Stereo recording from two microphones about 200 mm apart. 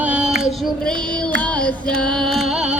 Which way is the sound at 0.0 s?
5° right (ahead or behind).